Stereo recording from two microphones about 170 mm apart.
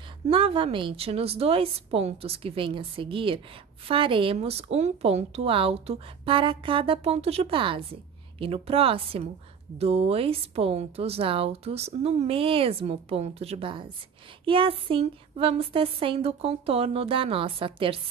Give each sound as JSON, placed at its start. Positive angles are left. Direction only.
{"t": 0.3, "sound": "speech", "side_deg": -30}